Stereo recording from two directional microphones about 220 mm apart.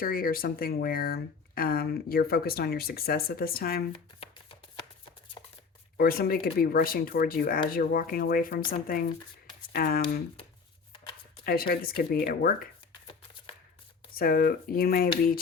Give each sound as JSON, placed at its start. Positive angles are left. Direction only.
{"t": 0.0, "sound": "speech", "side_deg": 40}
{"t": 3.9, "sound": "chopping", "side_deg": 25}
{"t": 6.0, "sound": "speech", "side_deg": 45}
{"t": 9.7, "sound": "speech", "side_deg": 45}
{"t": 11.4, "sound": "speech", "side_deg": 45}
{"t": 14.2, "sound": "speech", "side_deg": 40}